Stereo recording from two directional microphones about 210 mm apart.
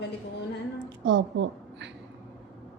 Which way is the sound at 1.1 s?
60° right (ahead or behind).